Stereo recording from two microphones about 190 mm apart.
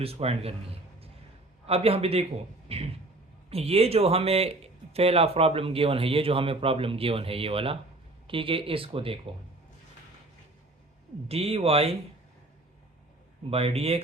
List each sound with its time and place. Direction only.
0.0 s speech: 30° right (ahead or behind)
1.6 s speech: 30° right (ahead or behind)
11.3 s speech: 30° right (ahead or behind)
13.5 s speech: 30° right (ahead or behind)